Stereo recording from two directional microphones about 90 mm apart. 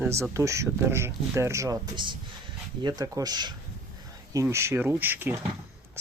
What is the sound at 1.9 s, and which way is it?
Speech, 60° right (ahead or behind).